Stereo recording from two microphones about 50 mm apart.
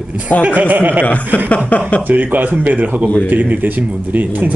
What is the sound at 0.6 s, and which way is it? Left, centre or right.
Speech, right.